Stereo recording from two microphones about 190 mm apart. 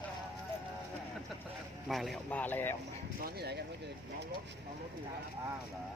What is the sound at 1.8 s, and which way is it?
Speech, centre (ahead or behind).